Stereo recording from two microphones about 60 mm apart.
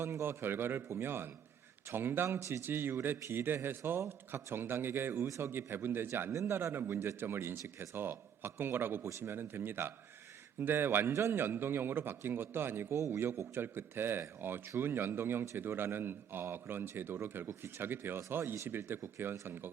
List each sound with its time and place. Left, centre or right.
0.0 s a man's voice: right
2.4 s a man's voice: right
12.9 s a man's voice: right
13.5 s a man's voice: right